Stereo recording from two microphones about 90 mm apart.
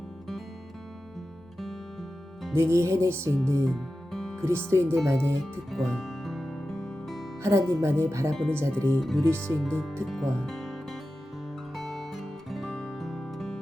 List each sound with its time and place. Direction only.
1.5 s music: centre (ahead or behind)
2.6 s speech: 30° right (ahead or behind)
3.4 s music: 5° left (ahead or behind)
4.4 s speech: 30° right (ahead or behind)
5.7 s music: 5° left (ahead or behind)
7.4 s speech: 30° right (ahead or behind)
8.3 s speech: 10° left (ahead or behind)
9.0 s speech: centre (ahead or behind)
11.7 s music: centre (ahead or behind)